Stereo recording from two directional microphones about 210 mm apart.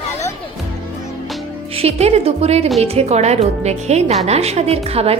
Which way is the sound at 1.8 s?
30° right (ahead or behind).